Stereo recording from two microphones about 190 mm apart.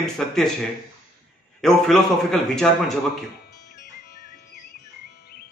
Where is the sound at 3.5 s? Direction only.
55° left (ahead or behind).